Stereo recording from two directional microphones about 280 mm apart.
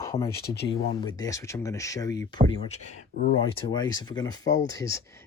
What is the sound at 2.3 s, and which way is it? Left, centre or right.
Speech, left.